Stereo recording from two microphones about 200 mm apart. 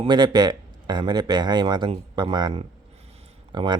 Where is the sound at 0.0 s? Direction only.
20° right (ahead or behind).